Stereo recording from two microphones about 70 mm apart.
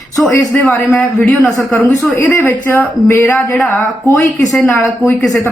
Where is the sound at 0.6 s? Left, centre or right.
Left.